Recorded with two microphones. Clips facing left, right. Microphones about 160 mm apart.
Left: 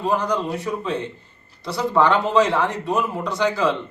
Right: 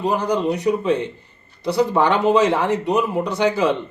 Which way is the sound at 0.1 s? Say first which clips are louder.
Right 1 dB; 20° right (ahead or behind).